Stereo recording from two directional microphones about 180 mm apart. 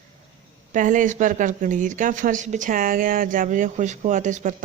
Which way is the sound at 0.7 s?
45° right (ahead or behind).